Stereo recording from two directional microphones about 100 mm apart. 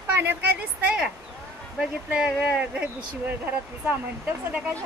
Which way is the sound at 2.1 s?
10° right (ahead or behind).